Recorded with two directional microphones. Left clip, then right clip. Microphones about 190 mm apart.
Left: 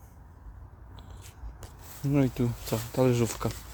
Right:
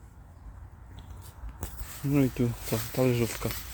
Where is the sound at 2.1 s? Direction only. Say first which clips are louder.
Even; 15° left (ahead or behind).